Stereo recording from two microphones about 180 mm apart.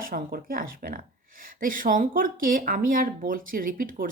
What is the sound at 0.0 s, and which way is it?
Speech, 55° right (ahead or behind).